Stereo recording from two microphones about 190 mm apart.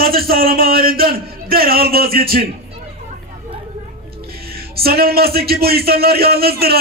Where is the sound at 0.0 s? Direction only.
50° right (ahead or behind).